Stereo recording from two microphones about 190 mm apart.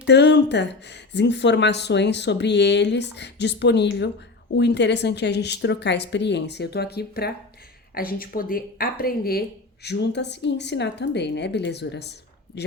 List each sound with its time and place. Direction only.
0.1 s speech: 65° left (ahead or behind)
9.8 s speech: 60° left (ahead or behind)